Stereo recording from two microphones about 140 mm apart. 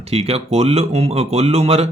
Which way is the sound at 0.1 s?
45° right (ahead or behind).